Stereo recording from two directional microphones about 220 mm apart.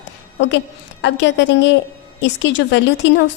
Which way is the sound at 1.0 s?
55° left (ahead or behind).